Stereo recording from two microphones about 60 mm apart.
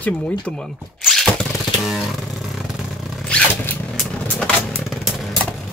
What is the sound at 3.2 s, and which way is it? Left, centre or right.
Zipper, centre.